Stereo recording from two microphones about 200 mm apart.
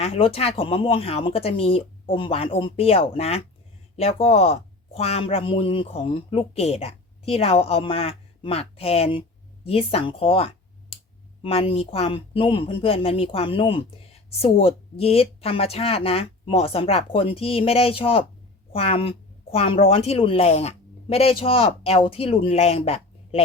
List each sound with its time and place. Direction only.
0.0 s a woman's voice: 30° left (ahead or behind)